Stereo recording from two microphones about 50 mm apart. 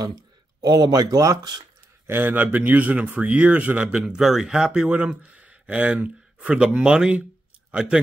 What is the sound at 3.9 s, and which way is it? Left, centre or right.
A man's voice, centre.